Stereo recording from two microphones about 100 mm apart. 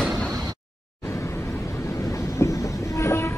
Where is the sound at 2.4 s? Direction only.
25° left (ahead or behind).